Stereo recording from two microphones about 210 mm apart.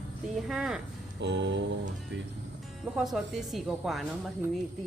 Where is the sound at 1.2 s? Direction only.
55° right (ahead or behind).